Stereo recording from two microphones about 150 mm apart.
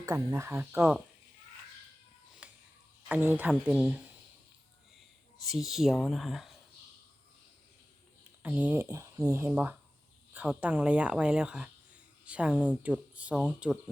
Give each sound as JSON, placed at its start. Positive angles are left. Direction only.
{"t": 0.0, "sound": "speech", "side_deg": -25}
{"t": 2.4, "sound": "a sound", "side_deg": -10}
{"t": 3.3, "sound": "speech", "side_deg": -10}
{"t": 5.5, "sound": "speech", "side_deg": 0}
{"t": 8.4, "sound": "speech", "side_deg": -10}
{"t": 9.5, "sound": "speech", "side_deg": -10}